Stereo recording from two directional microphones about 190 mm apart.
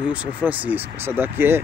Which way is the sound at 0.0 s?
5° right (ahead or behind).